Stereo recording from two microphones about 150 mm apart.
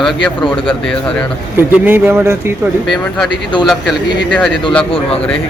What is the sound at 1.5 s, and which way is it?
Speech, 15° right (ahead or behind).